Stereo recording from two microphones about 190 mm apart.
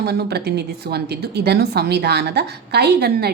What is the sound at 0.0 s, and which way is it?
A woman's voice, 60° right (ahead or behind).